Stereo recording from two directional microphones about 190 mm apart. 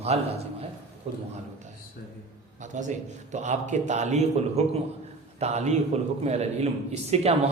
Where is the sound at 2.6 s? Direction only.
40° right (ahead or behind).